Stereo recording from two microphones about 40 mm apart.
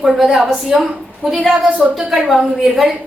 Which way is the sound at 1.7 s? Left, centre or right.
Right.